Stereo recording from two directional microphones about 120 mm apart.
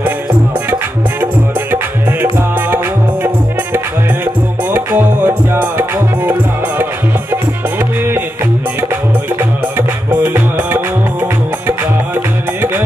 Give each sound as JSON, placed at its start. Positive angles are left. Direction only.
{"t": 1.2, "sound": "music", "side_deg": -15}
{"t": 3.7, "sound": "music", "side_deg": -15}
{"t": 9.4, "sound": "music", "side_deg": -15}